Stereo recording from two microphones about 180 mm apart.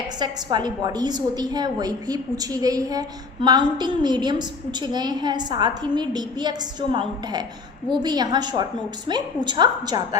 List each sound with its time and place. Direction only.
0.2 s a woman's voice: 25° right (ahead or behind)